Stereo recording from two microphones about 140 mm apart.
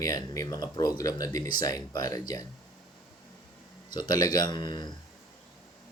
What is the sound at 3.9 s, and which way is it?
Speech, 30° left (ahead or behind).